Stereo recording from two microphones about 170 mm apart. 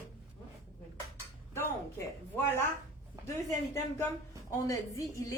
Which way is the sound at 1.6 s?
15° left (ahead or behind).